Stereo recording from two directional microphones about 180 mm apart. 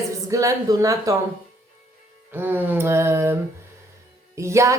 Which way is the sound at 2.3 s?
10° right (ahead or behind).